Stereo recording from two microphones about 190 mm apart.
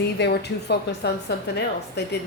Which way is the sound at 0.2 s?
60° left (ahead or behind).